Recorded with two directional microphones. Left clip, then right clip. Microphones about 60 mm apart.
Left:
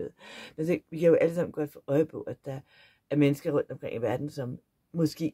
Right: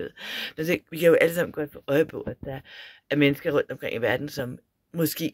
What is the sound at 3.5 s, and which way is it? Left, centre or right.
Speech, centre.